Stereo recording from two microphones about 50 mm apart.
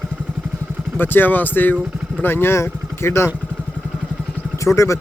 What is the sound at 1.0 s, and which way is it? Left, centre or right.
Speech, left.